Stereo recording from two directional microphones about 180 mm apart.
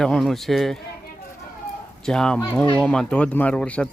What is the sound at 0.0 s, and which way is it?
Speech, centre (ahead or behind).